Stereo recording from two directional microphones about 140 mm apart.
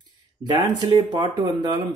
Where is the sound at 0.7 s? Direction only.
35° right (ahead or behind).